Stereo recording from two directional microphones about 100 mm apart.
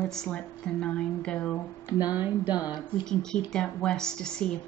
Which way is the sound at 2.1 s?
20° right (ahead or behind).